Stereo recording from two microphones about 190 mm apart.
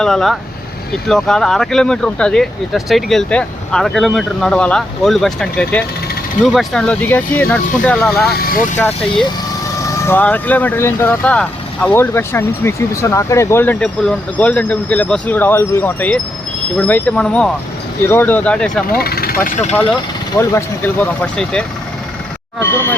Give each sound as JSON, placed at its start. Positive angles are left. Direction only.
{"t": 0.0, "sound": "speech", "side_deg": 0}
{"t": 8.3, "sound": "speech", "side_deg": 50}
{"t": 9.8, "sound": "speech", "side_deg": 15}
{"t": 18.9, "sound": "speech", "side_deg": 50}
{"t": 20.4, "sound": "speech", "side_deg": 15}
{"t": 22.6, "sound": "speech", "side_deg": 10}